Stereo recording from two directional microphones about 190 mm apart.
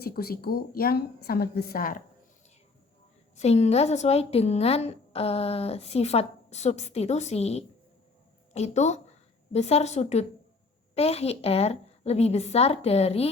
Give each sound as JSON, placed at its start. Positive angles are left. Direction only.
{"t": 0.0, "sound": "a woman's voice", "side_deg": 55}
{"t": 3.3, "sound": "a woman's voice", "side_deg": 35}